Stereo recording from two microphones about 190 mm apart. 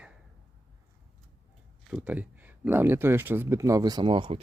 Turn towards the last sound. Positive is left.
turn(degrees=-25)  # may be behind; listen again after turning